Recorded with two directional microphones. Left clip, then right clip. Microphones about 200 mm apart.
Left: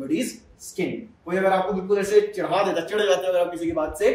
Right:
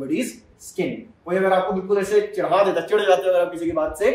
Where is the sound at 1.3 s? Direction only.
15° right (ahead or behind).